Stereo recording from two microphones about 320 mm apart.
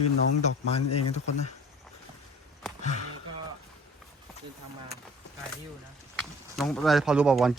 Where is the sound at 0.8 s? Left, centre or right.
Left.